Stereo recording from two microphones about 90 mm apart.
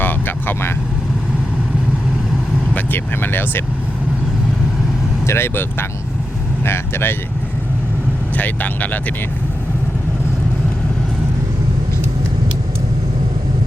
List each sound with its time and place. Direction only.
0.0 s speech: 20° left (ahead or behind)
2.7 s speech: 20° left (ahead or behind)
5.2 s speech: 25° left (ahead or behind)
6.7 s speech: 25° left (ahead or behind)
8.4 s speech: 15° left (ahead or behind)